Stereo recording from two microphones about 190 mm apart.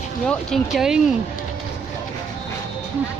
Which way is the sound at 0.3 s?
Centre (ahead or behind).